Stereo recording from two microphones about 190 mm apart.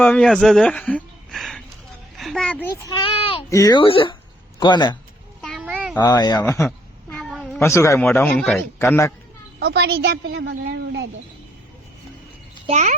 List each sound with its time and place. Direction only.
0.0 s a child's voice: 5° left (ahead or behind)
2.8 s a sound: 25° left (ahead or behind)
3.5 s speech: 20° left (ahead or behind)
5.4 s cat: centre (ahead or behind)
6.0 s cat: 20° left (ahead or behind); by 7.6 s centre (ahead or behind)
7.6 s speech: 15° left (ahead or behind)
8.8 s speech: 15° left (ahead or behind)
9.6 s a woman's voice: 55° right (ahead or behind)
12.6 s a child's voice: 40° right (ahead or behind)